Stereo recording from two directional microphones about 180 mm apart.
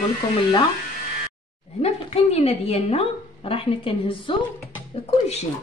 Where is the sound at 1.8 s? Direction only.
35° left (ahead or behind).